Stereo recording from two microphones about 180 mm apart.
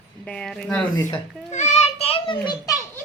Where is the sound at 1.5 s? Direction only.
40° left (ahead or behind).